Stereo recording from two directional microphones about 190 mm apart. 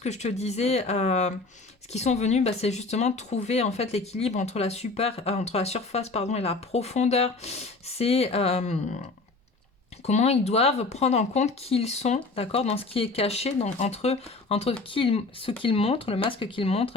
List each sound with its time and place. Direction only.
0.0 s speech: 35° left (ahead or behind)
10.1 s speech: 35° left (ahead or behind)